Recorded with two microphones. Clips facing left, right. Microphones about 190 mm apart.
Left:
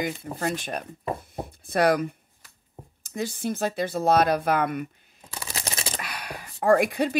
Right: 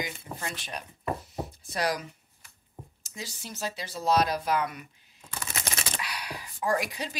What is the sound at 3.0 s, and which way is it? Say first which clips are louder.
A woman's voice: left 13 dB; 55° left (ahead or behind).